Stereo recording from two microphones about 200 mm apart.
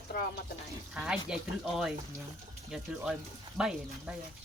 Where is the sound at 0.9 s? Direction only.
Centre (ahead or behind).